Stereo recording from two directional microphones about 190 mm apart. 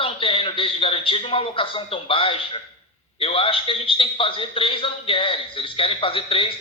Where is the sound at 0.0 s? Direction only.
30° left (ahead or behind).